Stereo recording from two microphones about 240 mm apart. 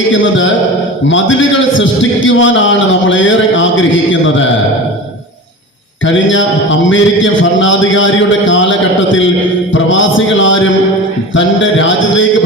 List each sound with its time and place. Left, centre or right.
1.0 s a man's voice: left
6.1 s a man's voice: left
11.3 s a sound: left